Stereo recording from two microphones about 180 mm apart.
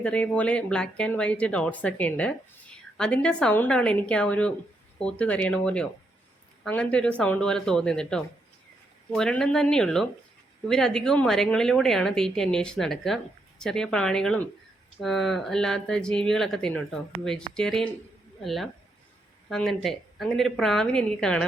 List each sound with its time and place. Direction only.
0.0 s a woman's voice: 5° left (ahead or behind)